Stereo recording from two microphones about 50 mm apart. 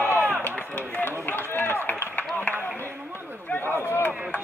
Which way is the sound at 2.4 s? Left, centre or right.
Left.